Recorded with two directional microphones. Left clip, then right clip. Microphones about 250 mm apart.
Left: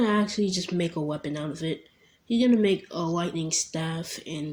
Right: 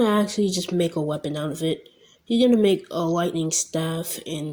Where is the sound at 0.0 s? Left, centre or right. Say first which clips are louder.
Right 4 dB; right.